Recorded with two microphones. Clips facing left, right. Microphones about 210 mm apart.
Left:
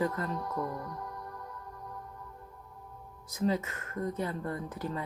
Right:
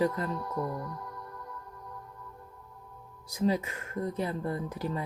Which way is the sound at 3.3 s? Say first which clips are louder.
Right 2 dB; 10° right (ahead or behind).